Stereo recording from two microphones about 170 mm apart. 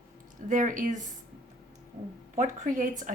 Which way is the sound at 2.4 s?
50° right (ahead or behind).